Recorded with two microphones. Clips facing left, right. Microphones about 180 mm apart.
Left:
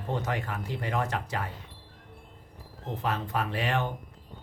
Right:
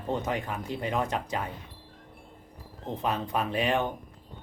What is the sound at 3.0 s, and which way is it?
Speech, 20° right (ahead or behind).